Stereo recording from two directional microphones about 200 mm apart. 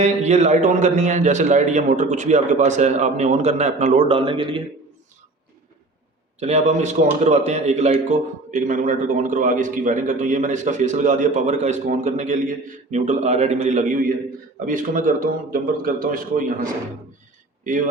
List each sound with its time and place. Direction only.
0.0 s a man's voice: 35° right (ahead or behind)
6.4 s a man's voice: 35° right (ahead or behind)